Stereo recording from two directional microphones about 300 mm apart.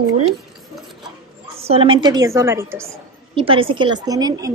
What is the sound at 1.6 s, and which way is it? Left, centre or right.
A woman's voice, centre.